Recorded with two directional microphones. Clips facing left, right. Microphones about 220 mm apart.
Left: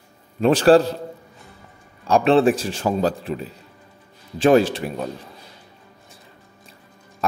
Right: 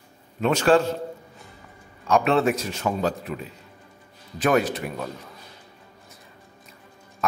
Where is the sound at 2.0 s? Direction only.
30° left (ahead or behind).